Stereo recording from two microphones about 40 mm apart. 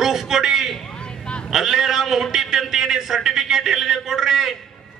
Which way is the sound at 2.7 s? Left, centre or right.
Centre.